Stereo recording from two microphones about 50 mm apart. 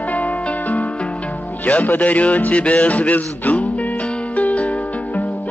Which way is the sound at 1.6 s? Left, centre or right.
Left.